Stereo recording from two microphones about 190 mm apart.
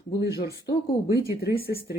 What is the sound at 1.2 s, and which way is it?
Speech, 55° left (ahead or behind).